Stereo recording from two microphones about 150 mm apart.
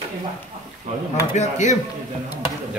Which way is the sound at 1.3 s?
50° left (ahead or behind).